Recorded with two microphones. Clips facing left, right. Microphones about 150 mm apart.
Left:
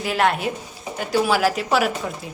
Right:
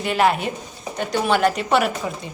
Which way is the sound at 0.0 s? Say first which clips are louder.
Right 1 dB; centre (ahead or behind).